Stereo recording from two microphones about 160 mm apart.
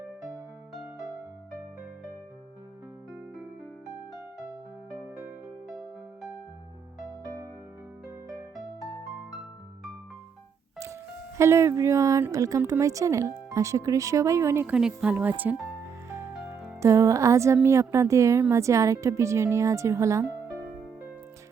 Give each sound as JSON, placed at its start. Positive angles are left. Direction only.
{"t": 11.3, "sound": "a woman's voice", "side_deg": -15}
{"t": 16.8, "sound": "a woman's voice", "side_deg": -20}